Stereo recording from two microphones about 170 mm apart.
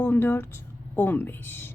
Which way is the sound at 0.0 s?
10° left (ahead or behind).